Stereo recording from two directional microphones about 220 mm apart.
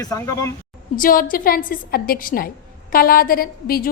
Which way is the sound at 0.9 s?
40° left (ahead or behind).